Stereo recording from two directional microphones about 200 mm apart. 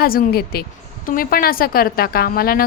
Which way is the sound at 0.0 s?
50° left (ahead or behind).